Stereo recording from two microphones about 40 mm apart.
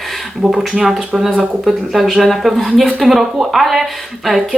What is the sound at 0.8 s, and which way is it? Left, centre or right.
Speech, centre.